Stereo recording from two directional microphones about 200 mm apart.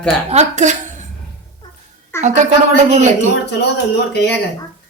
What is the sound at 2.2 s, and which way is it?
A woman's voice, 35° right (ahead or behind).